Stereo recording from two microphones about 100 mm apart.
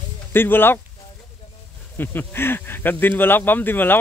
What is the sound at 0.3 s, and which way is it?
Speech, 20° left (ahead or behind).